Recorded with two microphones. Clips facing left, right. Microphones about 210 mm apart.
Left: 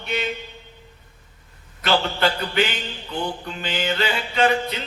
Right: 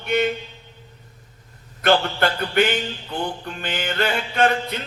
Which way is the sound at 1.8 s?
55° right (ahead or behind).